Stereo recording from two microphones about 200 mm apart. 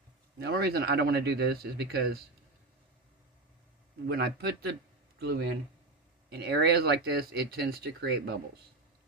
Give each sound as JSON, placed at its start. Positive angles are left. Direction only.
{"t": 0.3, "sound": "speech", "side_deg": -55}
{"t": 4.0, "sound": "speech", "side_deg": -50}